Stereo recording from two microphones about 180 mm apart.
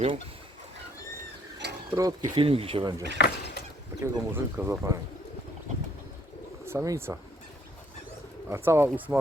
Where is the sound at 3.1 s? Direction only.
60° left (ahead or behind).